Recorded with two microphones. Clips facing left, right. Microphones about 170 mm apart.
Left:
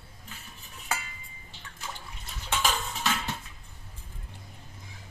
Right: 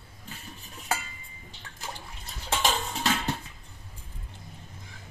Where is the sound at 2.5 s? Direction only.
35° right (ahead or behind).